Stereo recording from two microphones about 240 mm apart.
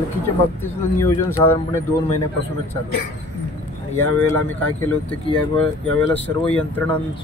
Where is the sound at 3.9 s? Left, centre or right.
Centre.